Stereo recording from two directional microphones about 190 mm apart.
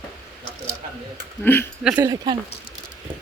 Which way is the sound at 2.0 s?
20° right (ahead or behind).